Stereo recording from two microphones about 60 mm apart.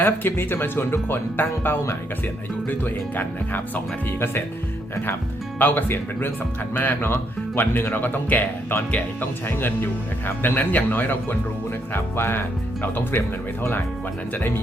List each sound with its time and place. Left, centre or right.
0.0 s speech: left
5.5 s speech: left
9.5 s speech: left